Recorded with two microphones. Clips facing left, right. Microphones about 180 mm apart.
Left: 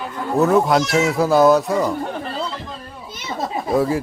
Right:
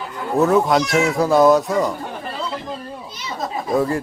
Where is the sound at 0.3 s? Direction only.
Centre (ahead or behind).